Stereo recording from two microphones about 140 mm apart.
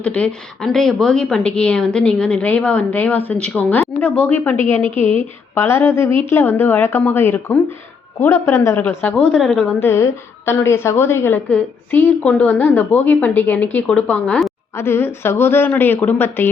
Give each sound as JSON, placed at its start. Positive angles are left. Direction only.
{"t": 0.0, "sound": "a woman's voice", "side_deg": 10}
{"t": 4.9, "sound": "a woman's voice", "side_deg": 55}
{"t": 5.5, "sound": "a woman's voice", "side_deg": 20}
{"t": 9.8, "sound": "a woman's voice", "side_deg": 15}
{"t": 14.8, "sound": "a woman's voice", "side_deg": 15}